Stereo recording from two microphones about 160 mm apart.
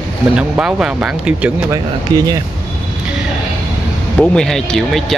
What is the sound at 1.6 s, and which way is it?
Speech, 25° right (ahead or behind).